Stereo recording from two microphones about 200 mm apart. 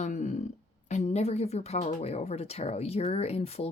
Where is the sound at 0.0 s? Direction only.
40° left (ahead or behind).